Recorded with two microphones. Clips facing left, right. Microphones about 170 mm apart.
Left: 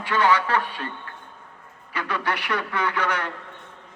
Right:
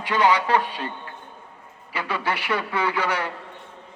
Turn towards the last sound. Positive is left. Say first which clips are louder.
# right 1 dB
turn(degrees=-10)  # may be behind; listen again after turning